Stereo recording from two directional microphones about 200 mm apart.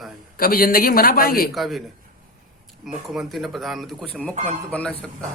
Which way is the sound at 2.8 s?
Centre (ahead or behind).